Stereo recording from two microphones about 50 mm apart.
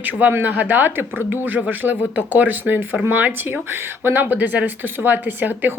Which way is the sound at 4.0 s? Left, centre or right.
Right.